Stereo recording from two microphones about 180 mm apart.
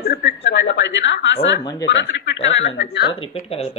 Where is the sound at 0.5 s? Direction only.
85° left.